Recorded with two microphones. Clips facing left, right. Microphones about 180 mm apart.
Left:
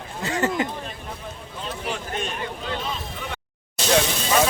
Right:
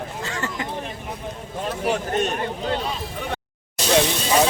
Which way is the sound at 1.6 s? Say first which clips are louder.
Right 7 dB; 45° right (ahead or behind).